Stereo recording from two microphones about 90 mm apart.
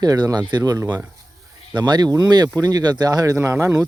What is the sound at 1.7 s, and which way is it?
Speech, 50° right (ahead or behind).